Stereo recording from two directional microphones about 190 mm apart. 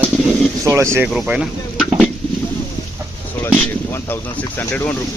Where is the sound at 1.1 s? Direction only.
5° right (ahead or behind).